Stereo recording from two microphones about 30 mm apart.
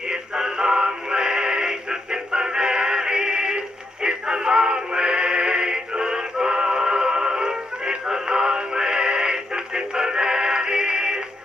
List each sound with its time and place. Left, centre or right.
0.1 s synthetic singing: centre